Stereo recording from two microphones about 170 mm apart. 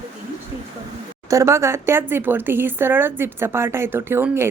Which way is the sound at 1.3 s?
15° right (ahead or behind).